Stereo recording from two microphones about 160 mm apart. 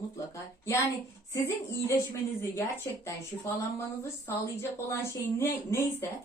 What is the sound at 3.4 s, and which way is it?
A woman's voice, 15° left (ahead or behind).